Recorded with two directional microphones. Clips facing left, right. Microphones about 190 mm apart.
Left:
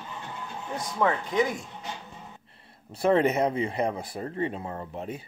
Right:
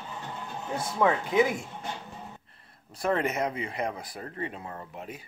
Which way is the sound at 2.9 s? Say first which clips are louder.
Left 6 dB; 30° left (ahead or behind).